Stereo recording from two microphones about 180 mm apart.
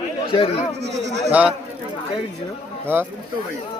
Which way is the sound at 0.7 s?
75° right (ahead or behind).